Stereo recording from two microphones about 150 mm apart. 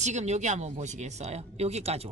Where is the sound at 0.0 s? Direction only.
50° right (ahead or behind).